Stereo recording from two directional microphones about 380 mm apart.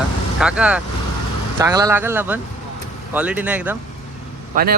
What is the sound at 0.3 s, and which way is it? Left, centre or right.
A man's voice, centre.